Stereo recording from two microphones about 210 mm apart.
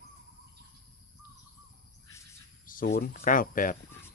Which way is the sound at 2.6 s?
40° left (ahead or behind).